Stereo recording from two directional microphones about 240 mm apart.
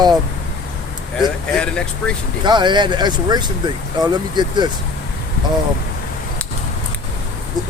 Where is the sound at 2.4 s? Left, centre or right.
Centre.